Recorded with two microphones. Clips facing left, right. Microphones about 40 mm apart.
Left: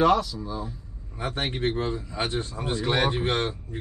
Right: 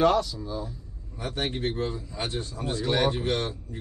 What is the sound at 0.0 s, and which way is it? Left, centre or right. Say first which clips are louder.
Speech: left 1 dB; centre.